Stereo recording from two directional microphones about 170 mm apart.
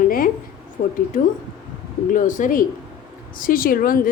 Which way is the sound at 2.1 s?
50° left (ahead or behind).